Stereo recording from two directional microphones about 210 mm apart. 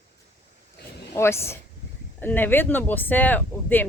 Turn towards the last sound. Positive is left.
turn(degrees=10)  # may be behind; listen again after turning